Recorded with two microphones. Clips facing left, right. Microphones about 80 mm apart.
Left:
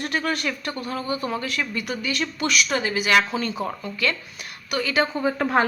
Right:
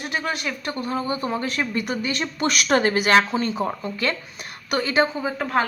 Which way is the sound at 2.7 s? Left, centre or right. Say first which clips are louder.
Right 6 dB; right.